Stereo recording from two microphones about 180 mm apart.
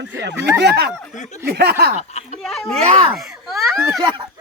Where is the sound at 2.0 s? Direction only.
35° left (ahead or behind).